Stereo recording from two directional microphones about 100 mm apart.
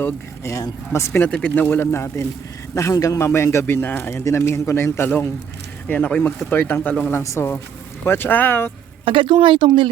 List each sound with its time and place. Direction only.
0.0 s a man's voice: 25° left (ahead or behind)
4.2 s a man's voice: 30° left (ahead or behind)
7.2 s a man's voice: 30° left (ahead or behind)
9.0 s speech: 55° right (ahead or behind)